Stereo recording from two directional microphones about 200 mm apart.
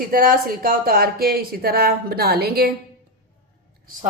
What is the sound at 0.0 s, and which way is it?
Speech, 45° right (ahead or behind).